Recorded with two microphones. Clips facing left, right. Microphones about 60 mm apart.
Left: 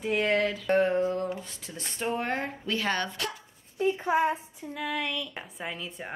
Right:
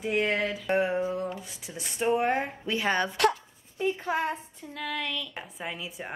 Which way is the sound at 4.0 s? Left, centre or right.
Centre.